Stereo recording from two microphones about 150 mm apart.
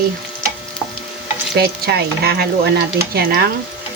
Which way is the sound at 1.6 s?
90° right.